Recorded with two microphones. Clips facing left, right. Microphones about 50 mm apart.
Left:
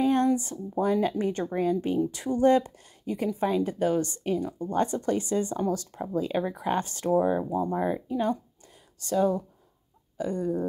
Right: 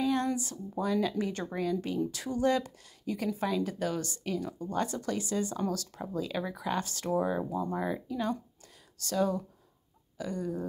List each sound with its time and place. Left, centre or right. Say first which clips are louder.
0.0 s a sound: left 6 dB; left
0.4 s speech: left 6 dB; left
10.1 s chicken: left 6 dB; left